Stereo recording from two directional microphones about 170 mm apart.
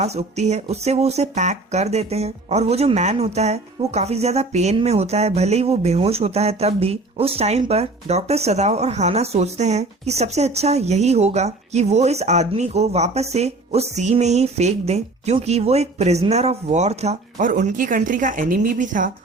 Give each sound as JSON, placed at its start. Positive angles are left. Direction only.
{"t": 0.0, "sound": "speech", "side_deg": -40}